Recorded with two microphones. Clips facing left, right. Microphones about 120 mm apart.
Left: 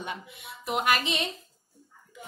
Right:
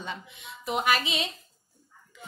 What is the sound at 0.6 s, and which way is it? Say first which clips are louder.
Music: even; centre (ahead or behind).